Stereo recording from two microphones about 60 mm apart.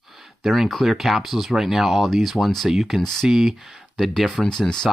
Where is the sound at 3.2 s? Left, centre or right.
Centre.